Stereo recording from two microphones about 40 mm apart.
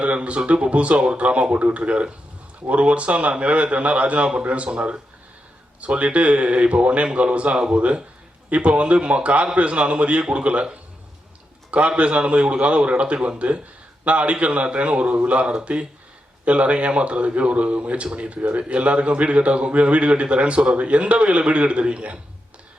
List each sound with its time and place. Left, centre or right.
0.0 s speech: right
11.9 s speech: right